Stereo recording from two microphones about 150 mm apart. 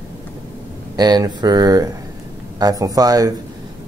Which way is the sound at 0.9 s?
25° right (ahead or behind).